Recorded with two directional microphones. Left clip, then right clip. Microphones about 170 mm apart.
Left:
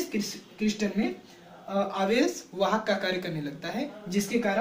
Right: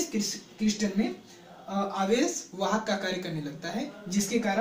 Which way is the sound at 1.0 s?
15° left (ahead or behind).